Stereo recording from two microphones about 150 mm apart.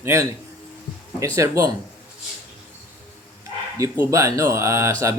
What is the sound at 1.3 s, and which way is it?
Speech, 20° right (ahead or behind).